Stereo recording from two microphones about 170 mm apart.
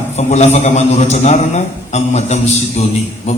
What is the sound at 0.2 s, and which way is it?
A man's voice, 40° left (ahead or behind).